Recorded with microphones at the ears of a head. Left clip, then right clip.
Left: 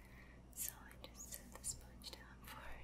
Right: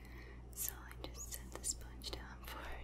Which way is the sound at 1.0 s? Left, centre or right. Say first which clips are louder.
Right 6 dB; right.